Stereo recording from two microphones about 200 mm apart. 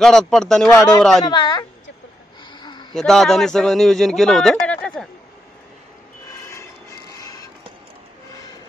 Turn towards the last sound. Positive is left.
turn(degrees=20)  # may be behind; listen again after turning